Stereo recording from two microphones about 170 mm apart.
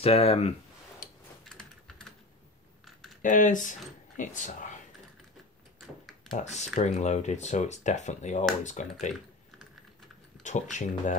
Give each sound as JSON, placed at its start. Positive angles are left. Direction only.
{"t": 0.0, "sound": "speech", "side_deg": 35}
{"t": 1.0, "sound": "typing", "side_deg": 55}
{"t": 3.2, "sound": "speech", "side_deg": 50}
{"t": 6.3, "sound": "speech", "side_deg": 40}
{"t": 10.4, "sound": "speech", "side_deg": 45}